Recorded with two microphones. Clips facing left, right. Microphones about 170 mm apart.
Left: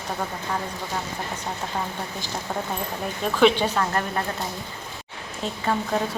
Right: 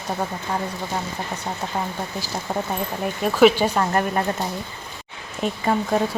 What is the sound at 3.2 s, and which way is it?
Speech, 10° right (ahead or behind).